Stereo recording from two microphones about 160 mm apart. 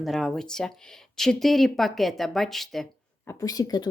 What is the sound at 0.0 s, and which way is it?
Speech, centre (ahead or behind).